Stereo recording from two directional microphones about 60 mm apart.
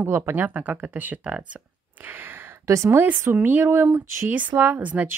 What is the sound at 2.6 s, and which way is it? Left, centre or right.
Speech, right.